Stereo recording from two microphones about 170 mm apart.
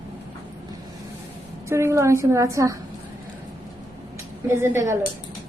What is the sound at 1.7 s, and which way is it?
A woman's voice, 15° right (ahead or behind).